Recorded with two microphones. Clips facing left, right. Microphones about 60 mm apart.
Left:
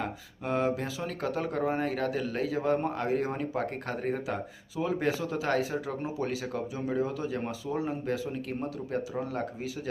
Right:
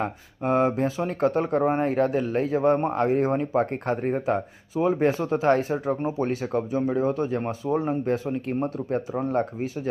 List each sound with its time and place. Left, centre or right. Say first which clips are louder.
0.0 s speech: right 7 dB; right
3.3 s speech: right 8 dB; right
5.2 s speech: right 7 dB; right
8.3 s speech: right 7 dB; right
8.9 s speech: right 5 dB; right